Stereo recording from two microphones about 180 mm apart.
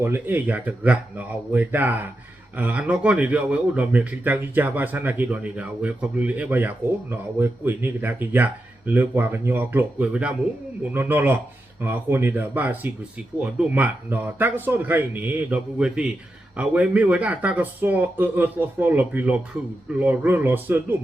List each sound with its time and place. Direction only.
0.0 s speech: 10° right (ahead or behind)